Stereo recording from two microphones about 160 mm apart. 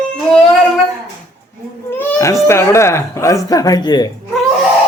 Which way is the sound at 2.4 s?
15° left (ahead or behind).